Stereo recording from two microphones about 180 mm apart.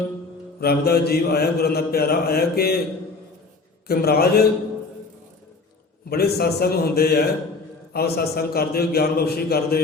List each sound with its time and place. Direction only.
0.6 s mantra: 60° left (ahead or behind)
3.8 s mantra: 60° left (ahead or behind)
6.1 s mantra: 60° left (ahead or behind)